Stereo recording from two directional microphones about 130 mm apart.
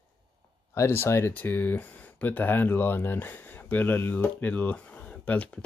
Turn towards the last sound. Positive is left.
turn(degrees=10)  # may be behind; listen again after turning